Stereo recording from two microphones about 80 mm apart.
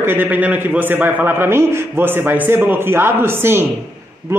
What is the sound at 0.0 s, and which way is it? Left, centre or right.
A man's voice, right.